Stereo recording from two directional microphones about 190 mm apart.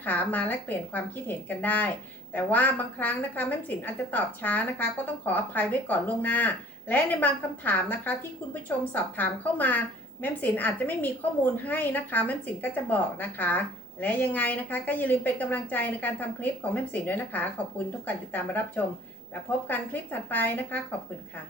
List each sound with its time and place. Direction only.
0.0 s a woman's voice: 10° left (ahead or behind)